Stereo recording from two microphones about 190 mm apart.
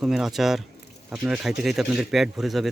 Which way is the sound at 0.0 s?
Centre (ahead or behind).